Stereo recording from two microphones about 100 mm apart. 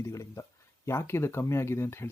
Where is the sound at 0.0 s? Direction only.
30° left (ahead or behind).